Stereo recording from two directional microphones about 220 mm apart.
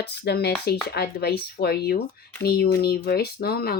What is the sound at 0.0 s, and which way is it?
Speech, 45° left (ahead or behind).